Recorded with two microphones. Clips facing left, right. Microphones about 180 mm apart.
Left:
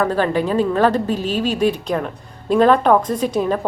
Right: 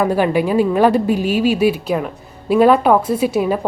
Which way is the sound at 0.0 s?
10° right (ahead or behind).